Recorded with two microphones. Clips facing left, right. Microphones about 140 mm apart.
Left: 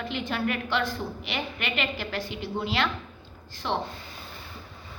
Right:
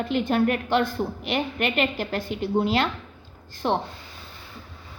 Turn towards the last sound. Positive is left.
turn(degrees=-45)  # may be behind; listen again after turning